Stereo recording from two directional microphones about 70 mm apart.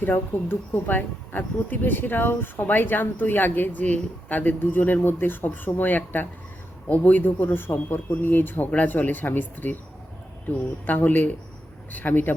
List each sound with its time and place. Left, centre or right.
0.0 s speech: left